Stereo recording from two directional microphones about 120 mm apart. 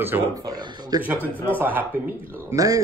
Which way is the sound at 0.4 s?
30° right (ahead or behind).